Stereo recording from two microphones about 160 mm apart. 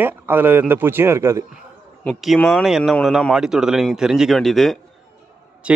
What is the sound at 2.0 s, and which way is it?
A man's voice, centre (ahead or behind).